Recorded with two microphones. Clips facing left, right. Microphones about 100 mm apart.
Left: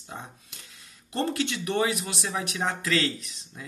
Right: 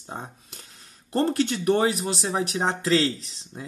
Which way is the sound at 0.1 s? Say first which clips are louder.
Right 4 dB; 35° right (ahead or behind).